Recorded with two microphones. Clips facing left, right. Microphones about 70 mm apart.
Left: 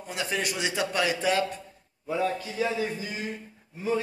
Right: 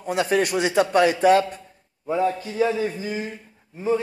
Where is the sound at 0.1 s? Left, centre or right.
Right.